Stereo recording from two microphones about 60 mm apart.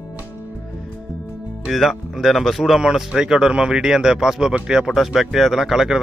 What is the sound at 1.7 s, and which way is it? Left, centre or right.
A man's voice, centre.